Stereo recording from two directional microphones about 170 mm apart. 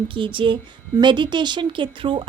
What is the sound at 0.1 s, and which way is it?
A woman's voice, 30° right (ahead or behind).